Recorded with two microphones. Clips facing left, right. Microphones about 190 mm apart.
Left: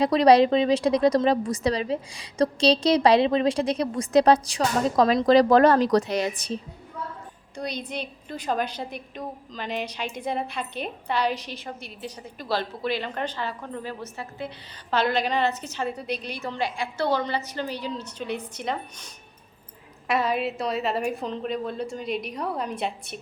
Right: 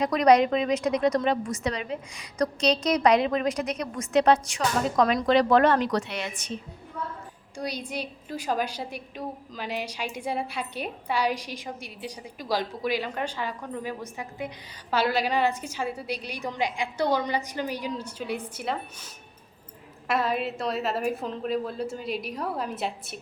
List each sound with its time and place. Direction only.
0.0 s a woman's voice: 30° left (ahead or behind)
7.5 s a woman's voice: 10° right (ahead or behind)